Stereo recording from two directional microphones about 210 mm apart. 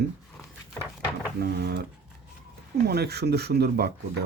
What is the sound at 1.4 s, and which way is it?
Speech, 50° right (ahead or behind).